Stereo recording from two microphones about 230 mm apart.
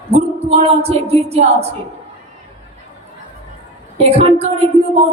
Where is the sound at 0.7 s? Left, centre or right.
Right.